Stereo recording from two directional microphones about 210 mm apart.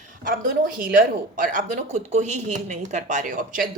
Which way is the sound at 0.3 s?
40° right (ahead or behind).